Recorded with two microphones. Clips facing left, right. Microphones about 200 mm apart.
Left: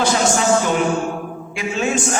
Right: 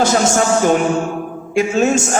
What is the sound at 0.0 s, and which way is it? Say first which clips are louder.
A man's voice: right 3 dB; 45° right (ahead or behind).